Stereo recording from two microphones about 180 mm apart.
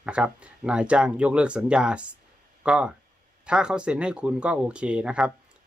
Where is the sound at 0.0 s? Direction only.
5° right (ahead or behind).